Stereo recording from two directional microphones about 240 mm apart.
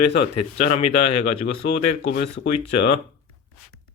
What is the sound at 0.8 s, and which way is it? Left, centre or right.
Speech, left.